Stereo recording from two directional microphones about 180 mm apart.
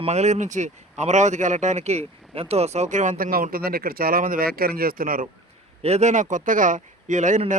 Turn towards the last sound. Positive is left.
turn(degrees=-45)  # may be behind; listen again after turning